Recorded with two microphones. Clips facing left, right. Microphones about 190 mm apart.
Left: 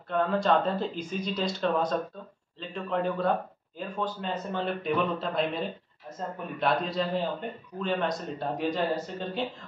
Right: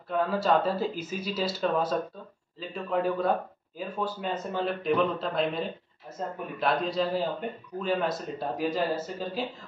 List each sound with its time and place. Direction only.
0.1 s speech: 5° right (ahead or behind)